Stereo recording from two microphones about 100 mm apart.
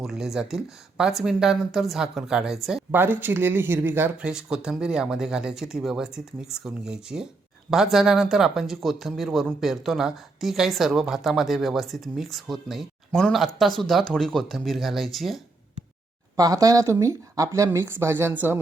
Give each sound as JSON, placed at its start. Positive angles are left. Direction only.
{"t": 0.0, "sound": "speech", "side_deg": -5}
{"t": 2.9, "sound": "speech", "side_deg": -20}
{"t": 4.2, "sound": "speech", "side_deg": -10}
{"t": 16.3, "sound": "speech", "side_deg": -35}